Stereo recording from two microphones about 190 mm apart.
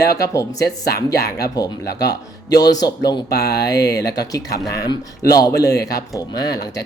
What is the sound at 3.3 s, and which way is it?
Speech, 55° left (ahead or behind).